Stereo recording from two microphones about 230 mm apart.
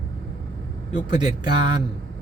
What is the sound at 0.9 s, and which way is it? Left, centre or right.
Speech, centre.